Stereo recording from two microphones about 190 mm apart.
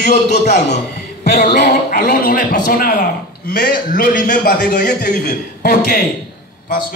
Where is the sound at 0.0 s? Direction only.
60° left (ahead or behind).